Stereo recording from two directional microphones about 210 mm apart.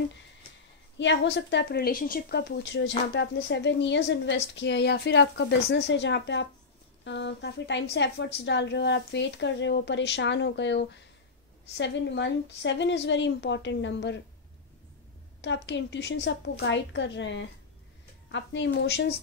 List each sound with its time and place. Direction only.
0.9 s a woman's voice: 55° left (ahead or behind)
15.4 s a woman's voice: 55° left (ahead or behind)